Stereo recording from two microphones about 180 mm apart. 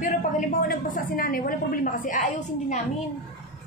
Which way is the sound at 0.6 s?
50° left (ahead or behind).